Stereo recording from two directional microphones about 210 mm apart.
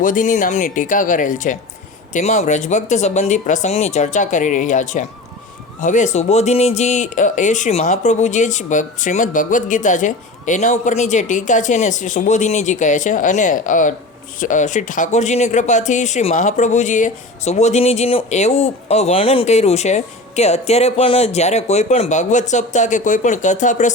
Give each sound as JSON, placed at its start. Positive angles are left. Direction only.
{"t": 0.0, "sound": "speech", "side_deg": 40}